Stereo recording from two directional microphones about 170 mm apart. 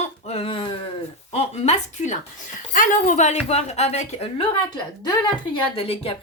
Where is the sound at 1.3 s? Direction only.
40° left (ahead or behind).